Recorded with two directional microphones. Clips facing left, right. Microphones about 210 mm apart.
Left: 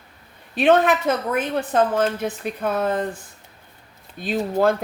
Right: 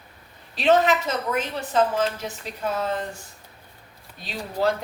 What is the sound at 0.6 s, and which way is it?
Speech, 55° left (ahead or behind).